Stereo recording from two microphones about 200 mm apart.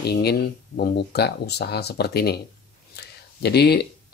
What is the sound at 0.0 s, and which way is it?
Speech, 55° left (ahead or behind).